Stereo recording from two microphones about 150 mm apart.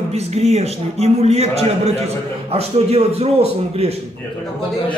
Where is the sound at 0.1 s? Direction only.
45° right (ahead or behind).